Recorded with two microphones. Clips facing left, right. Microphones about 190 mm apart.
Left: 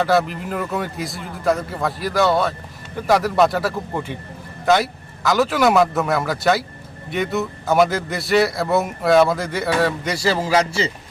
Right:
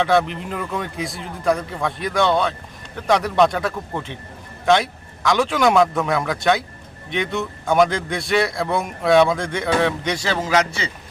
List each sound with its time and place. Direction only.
0.0 s a man's voice: 5° left (ahead or behind)
10.4 s a man's voice: 30° left (ahead or behind)